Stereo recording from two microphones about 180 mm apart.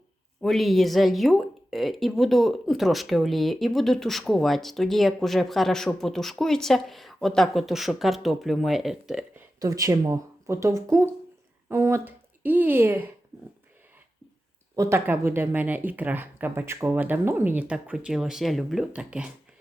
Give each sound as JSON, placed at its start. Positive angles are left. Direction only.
{"t": 0.4, "sound": "speech", "side_deg": 0}
{"t": 9.6, "sound": "a woman's voice", "side_deg": -20}
{"t": 14.8, "sound": "speech", "side_deg": -15}